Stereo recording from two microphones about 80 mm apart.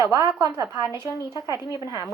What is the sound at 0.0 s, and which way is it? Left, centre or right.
Speech, right.